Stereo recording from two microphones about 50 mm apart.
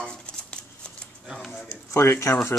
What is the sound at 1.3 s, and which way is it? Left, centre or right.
Speech, centre.